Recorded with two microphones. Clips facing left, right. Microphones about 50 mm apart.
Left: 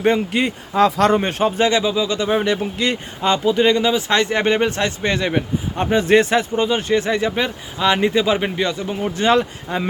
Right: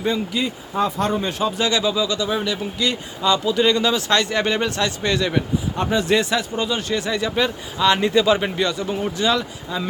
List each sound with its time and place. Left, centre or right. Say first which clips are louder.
0.0 s speech: left 5 dB; left
0.8 s speech: left 6 dB; left
1.2 s speech: left 4 dB; left
1.8 s speech: left 1 dB; left
3.5 s speech: left 2 dB; left
9.1 s speech: left 7 dB; left